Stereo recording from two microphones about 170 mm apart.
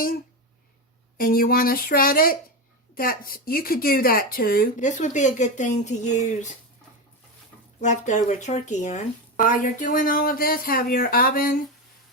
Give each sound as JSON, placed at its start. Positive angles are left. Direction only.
{"t": 1.2, "sound": "a woman's voice", "side_deg": 60}
{"t": 7.8, "sound": "a woman's voice", "side_deg": 45}